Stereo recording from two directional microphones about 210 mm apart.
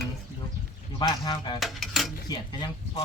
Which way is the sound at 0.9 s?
20° left (ahead or behind).